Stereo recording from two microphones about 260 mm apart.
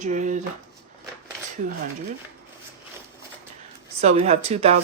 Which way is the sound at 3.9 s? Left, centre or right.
Right.